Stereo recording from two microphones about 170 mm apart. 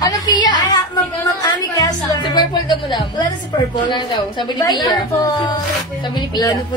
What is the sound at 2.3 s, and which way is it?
A woman's voice, 25° left (ahead or behind).